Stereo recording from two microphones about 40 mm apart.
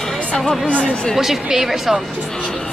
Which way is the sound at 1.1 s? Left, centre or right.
Centre.